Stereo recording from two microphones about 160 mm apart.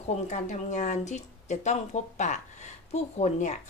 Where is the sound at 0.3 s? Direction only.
50° left (ahead or behind).